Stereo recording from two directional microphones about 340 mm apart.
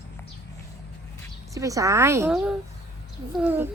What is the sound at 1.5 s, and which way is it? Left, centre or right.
A woman's voice, centre.